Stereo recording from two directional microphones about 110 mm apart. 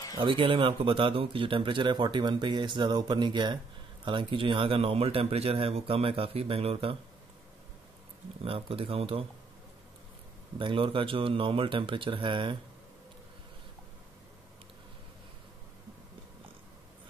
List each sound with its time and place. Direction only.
0.2 s a man's voice: 55° right (ahead or behind)
8.4 s a man's voice: 60° right (ahead or behind)
10.6 s speech: 50° right (ahead or behind)